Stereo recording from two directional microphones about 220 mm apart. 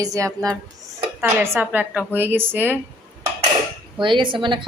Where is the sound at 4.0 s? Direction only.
20° right (ahead or behind).